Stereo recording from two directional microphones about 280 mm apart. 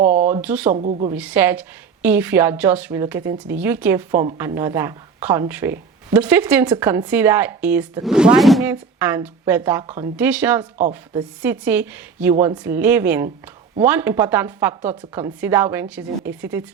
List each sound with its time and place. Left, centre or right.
0.0 s a sound: right
0.3 s speech: centre
0.7 s speech: right
1.1 s a woman's voice: centre